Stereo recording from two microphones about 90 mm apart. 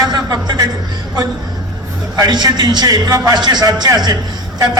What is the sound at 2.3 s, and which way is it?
A man's voice, 50° right (ahead or behind).